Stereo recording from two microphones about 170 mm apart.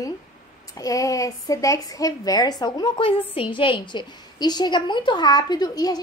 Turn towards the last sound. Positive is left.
turn(degrees=20)  # may be behind; listen again after turning